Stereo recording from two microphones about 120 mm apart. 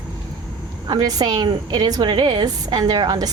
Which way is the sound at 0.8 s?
35° right (ahead or behind).